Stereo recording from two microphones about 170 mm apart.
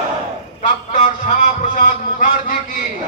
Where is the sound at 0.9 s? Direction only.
50° left (ahead or behind).